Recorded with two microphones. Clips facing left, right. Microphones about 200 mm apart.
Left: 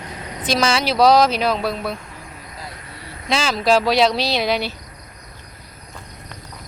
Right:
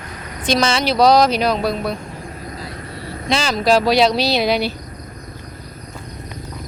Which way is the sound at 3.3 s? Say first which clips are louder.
Right 1 dB; 5° left (ahead or behind).